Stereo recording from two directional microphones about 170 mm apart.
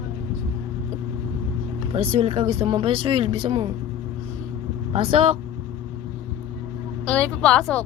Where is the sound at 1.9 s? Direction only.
35° right (ahead or behind).